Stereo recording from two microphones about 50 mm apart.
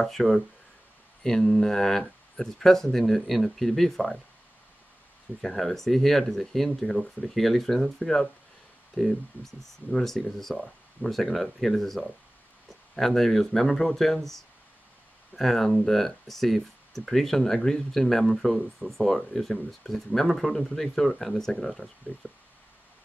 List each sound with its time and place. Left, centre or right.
0.0 s speech: centre
1.4 s speech: centre
5.4 s speech: centre
22.2 s speech: left